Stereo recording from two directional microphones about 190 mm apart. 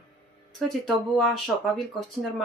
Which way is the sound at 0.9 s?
Centre (ahead or behind).